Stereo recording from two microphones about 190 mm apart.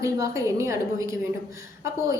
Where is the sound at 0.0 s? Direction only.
15° right (ahead or behind).